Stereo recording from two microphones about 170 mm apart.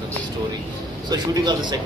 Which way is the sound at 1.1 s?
25° right (ahead or behind).